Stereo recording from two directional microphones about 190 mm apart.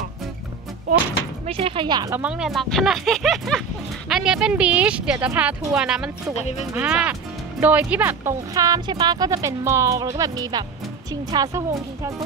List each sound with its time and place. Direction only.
1.5 s speech: 30° right (ahead or behind)
2.1 s speech: 5° right (ahead or behind)